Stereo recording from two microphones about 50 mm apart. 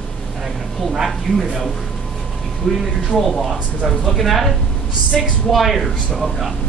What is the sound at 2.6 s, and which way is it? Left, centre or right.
Speech, centre.